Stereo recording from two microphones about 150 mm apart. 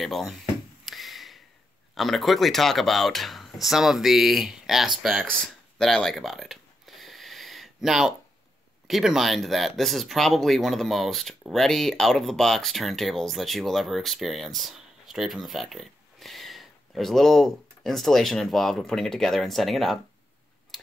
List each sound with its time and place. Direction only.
0.0 s speech: centre (ahead or behind)
0.8 s a sound: centre (ahead or behind)
2.0 s speech: centre (ahead or behind)
5.8 s a sound: 5° left (ahead or behind)
8.8 s speech: centre (ahead or behind)
20.7 s tick-tock: centre (ahead or behind)